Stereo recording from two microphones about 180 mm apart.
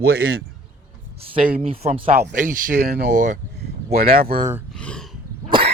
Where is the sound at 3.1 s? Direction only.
45° right (ahead or behind).